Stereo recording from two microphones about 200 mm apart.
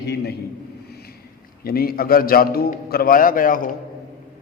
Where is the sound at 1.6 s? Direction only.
50° left (ahead or behind).